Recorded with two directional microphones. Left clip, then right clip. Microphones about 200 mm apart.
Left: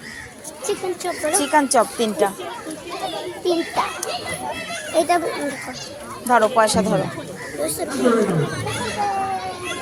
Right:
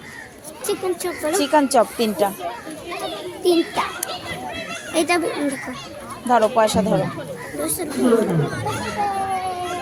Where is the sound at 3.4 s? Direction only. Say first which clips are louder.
Right 2 dB; 60° right (ahead or behind).